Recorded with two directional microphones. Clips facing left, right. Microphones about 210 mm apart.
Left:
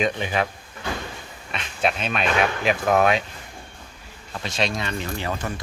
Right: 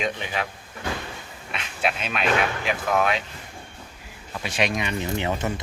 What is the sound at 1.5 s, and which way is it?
Speech, 5° right (ahead or behind).